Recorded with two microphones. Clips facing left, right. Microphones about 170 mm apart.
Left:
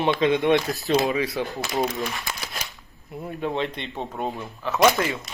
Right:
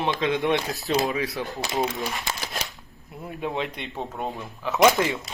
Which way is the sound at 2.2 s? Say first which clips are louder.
Right 2 dB; 20° right (ahead or behind).